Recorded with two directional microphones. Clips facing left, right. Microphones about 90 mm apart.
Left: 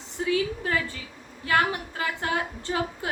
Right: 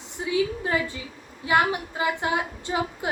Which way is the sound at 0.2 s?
20° right (ahead or behind).